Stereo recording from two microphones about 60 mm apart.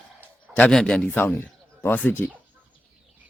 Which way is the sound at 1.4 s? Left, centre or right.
Left.